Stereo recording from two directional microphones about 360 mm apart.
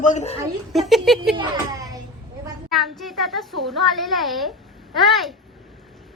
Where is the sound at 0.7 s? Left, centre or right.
Centre.